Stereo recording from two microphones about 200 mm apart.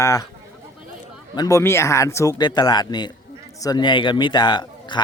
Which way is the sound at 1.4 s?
15° left (ahead or behind).